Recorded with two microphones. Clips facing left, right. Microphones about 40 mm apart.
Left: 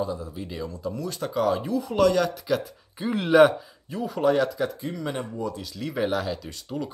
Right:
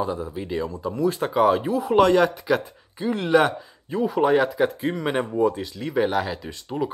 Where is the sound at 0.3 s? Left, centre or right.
Centre.